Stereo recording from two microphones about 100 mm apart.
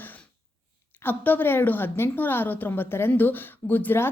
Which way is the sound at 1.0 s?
20° left (ahead or behind).